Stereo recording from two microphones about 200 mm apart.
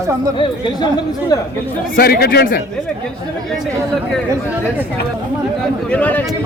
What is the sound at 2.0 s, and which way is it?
Speech, 50° left (ahead or behind).